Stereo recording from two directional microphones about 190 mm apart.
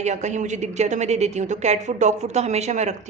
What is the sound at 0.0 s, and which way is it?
A woman's voice, 35° right (ahead or behind).